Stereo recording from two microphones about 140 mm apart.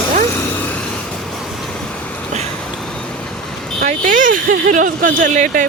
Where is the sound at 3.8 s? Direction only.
70° right (ahead or behind).